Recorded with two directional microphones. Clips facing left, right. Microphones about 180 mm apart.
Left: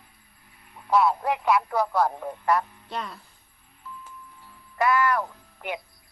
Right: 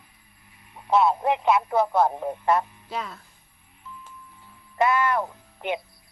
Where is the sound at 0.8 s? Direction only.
25° right (ahead or behind).